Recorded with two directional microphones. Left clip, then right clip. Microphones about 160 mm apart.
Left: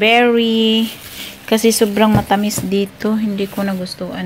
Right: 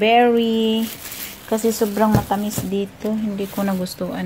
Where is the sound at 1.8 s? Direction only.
30° left (ahead or behind).